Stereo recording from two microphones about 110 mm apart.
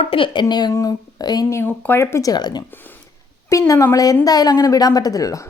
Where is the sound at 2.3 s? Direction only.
40° left (ahead or behind).